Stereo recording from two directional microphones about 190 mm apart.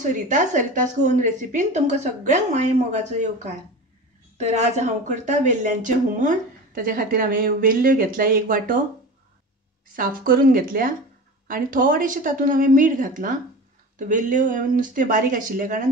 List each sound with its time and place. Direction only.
0.0 s a woman's voice: 40° right (ahead or behind)
4.4 s speech: 35° right (ahead or behind)
9.9 s speech: 45° right (ahead or behind)